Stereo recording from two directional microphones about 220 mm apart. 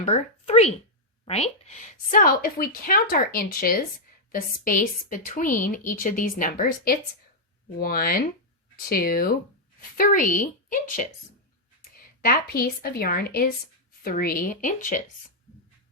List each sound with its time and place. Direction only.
0.0 s a woman's voice: 30° left (ahead or behind)